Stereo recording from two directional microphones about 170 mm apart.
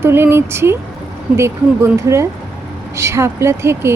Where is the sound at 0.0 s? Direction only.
15° right (ahead or behind).